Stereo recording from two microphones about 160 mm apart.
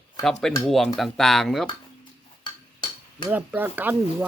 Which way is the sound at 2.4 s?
30° left (ahead or behind).